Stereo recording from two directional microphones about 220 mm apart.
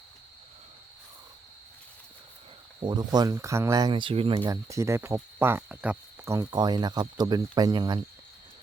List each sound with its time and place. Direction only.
2.8 s speech: 20° right (ahead or behind)